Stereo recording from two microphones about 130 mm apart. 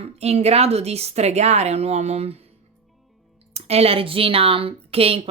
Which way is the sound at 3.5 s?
50° right (ahead or behind).